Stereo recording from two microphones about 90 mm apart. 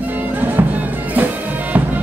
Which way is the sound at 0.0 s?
20° right (ahead or behind).